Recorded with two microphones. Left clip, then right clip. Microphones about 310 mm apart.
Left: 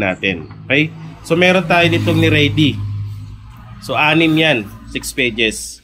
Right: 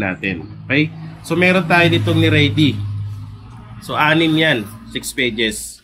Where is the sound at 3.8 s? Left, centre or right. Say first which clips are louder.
Left 2 dB; centre.